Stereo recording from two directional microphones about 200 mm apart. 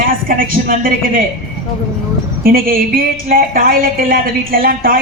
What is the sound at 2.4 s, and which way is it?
A woman's voice, 45° right (ahead or behind).